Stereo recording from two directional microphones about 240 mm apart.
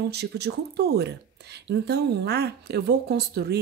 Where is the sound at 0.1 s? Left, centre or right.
Right.